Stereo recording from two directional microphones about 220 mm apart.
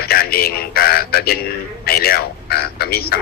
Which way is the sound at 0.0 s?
45° left (ahead or behind).